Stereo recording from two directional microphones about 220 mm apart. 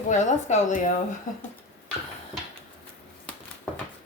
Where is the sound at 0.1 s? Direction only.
35° left (ahead or behind).